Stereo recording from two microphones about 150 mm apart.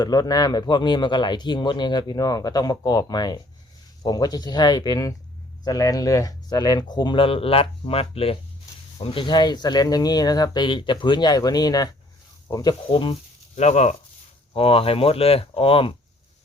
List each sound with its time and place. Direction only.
0.0 s speech: 25° left (ahead or behind)
13.6 s speech: 50° left (ahead or behind)